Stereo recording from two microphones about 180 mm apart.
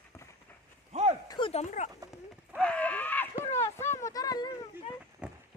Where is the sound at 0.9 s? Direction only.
35° right (ahead or behind).